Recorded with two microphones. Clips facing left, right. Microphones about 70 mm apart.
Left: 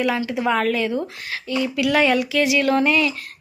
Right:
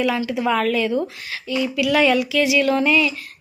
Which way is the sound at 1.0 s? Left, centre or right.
Left.